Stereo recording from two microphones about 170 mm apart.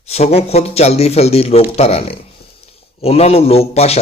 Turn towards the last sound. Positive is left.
turn(degrees=35)  # may be behind; listen again after turning